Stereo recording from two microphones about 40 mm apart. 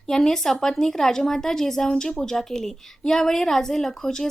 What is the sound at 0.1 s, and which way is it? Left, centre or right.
A woman's voice, centre.